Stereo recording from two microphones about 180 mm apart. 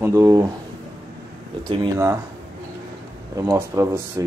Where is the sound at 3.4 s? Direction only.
15° right (ahead or behind).